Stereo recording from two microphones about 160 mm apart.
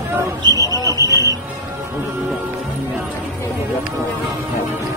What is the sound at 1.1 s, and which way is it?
Music, 20° right (ahead or behind).